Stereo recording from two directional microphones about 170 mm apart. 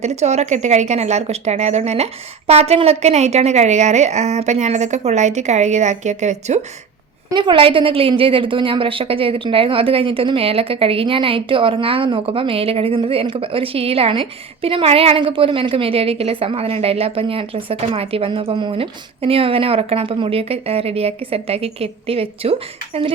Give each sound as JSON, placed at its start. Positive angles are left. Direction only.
{"t": 0.0, "sound": "a woman's voice", "side_deg": -40}
{"t": 7.3, "sound": "a woman's voice", "side_deg": -25}